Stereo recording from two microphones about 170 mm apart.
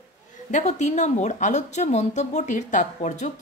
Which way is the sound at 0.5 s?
45° left (ahead or behind).